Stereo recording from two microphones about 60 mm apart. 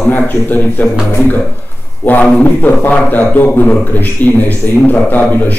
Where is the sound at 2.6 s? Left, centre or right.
Left.